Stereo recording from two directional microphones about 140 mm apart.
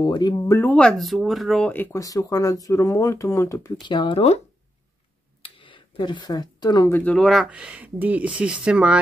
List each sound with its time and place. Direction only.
0.0 s speech: 30° left (ahead or behind)
0.6 s speech: 10° left (ahead or behind)
1.7 s speech: 15° left (ahead or behind)
2.0 s speech: 25° left (ahead or behind)
3.8 s speech: 35° left (ahead or behind)
5.4 s a sound: 35° left (ahead or behind)
6.9 s speech: 10° left (ahead or behind); by 9.0 s 10° right (ahead or behind)